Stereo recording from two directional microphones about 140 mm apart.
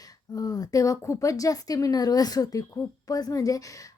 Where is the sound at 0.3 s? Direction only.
25° left (ahead or behind).